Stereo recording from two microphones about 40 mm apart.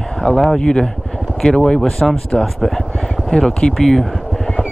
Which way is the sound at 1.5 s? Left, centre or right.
Left.